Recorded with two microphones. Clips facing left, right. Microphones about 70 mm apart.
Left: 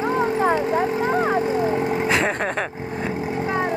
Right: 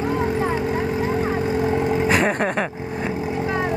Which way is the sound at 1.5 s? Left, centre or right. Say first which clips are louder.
Even; left.